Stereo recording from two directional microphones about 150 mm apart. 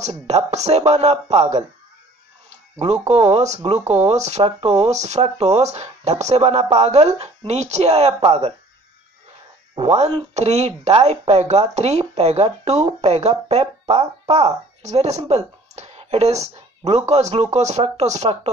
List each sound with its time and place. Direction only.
0.0 s speech: 45° right (ahead or behind)
3.3 s speech: 45° right (ahead or behind)
9.8 s speech: 45° right (ahead or behind)